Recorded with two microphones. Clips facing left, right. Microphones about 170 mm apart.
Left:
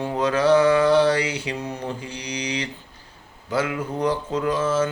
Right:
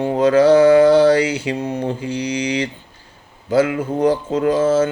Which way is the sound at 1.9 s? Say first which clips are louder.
Right 9 dB; 30° right (ahead or behind).